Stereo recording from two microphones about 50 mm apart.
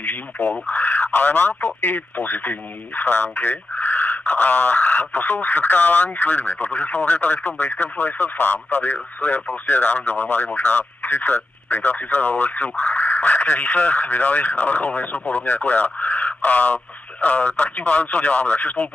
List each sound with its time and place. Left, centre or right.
0.0 s speech: left